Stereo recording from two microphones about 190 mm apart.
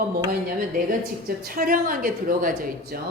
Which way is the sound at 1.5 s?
50° right (ahead or behind).